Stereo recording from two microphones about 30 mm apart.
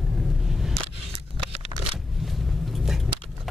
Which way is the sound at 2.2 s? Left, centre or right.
Centre.